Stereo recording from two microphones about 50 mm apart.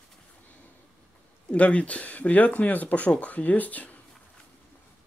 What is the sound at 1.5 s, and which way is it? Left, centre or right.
Speech, left.